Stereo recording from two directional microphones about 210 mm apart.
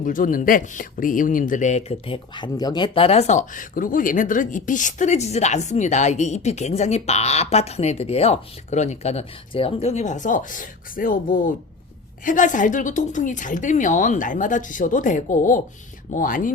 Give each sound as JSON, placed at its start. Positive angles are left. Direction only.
{"t": 0.0, "sound": "speech", "side_deg": 40}